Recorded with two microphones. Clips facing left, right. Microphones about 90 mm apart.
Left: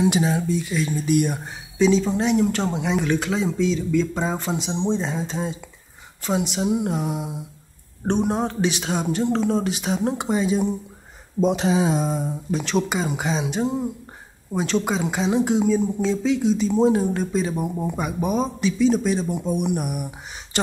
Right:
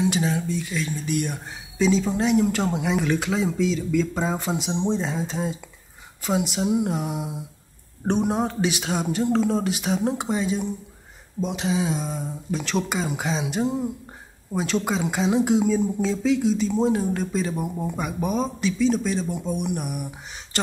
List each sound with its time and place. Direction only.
0.0 s speech: 15° left (ahead or behind)
1.8 s a woman's voice: 5° right (ahead or behind)
11.4 s a sound: 40° left (ahead or behind)
12.4 s a woman's voice: centre (ahead or behind)